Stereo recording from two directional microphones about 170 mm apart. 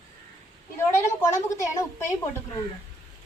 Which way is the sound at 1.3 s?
20° left (ahead or behind).